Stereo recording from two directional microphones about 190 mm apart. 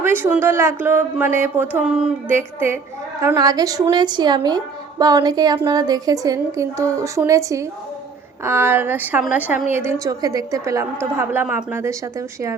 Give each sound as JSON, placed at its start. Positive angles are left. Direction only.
{"t": 0.0, "sound": "a woman's voice", "side_deg": -10}